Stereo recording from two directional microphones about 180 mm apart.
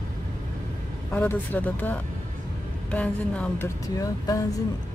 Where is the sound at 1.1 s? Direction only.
10° left (ahead or behind).